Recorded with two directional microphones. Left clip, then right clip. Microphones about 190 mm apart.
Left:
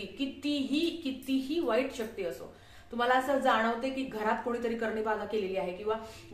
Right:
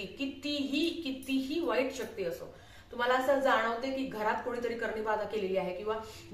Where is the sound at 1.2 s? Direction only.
20° left (ahead or behind).